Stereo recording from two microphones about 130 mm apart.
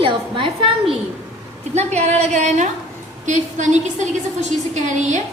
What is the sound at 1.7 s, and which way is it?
A woman's voice, 60° right (ahead or behind).